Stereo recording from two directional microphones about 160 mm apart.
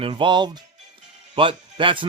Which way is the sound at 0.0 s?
30° right (ahead or behind).